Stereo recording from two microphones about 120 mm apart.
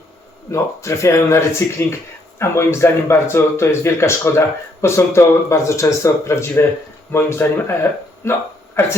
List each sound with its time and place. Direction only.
0.5 s speech: 25° left (ahead or behind)